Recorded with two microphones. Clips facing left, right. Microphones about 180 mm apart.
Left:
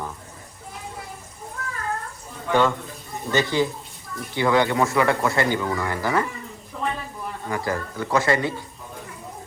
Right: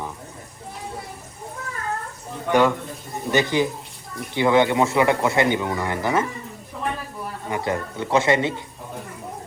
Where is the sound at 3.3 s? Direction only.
20° right (ahead or behind).